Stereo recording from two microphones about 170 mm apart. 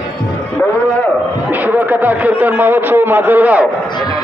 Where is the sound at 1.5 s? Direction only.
10° right (ahead or behind).